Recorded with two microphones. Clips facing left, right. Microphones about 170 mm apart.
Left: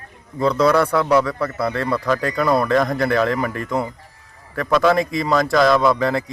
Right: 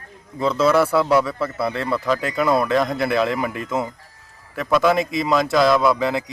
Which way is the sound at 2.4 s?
5° right (ahead or behind).